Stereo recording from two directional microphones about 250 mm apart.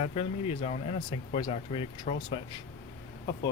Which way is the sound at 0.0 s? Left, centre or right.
Left.